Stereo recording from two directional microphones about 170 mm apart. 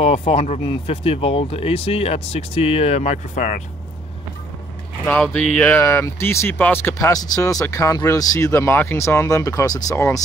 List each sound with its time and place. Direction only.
0.0 s speech: 35° left (ahead or behind)
5.0 s speech: 5° left (ahead or behind)